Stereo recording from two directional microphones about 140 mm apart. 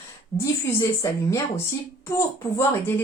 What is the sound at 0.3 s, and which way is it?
A woman's voice, 20° left (ahead or behind).